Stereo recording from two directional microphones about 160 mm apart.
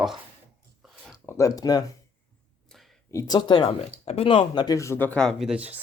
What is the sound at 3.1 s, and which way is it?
Speech, 20° left (ahead or behind).